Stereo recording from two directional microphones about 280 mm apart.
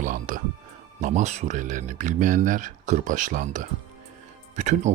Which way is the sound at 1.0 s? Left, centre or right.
Right.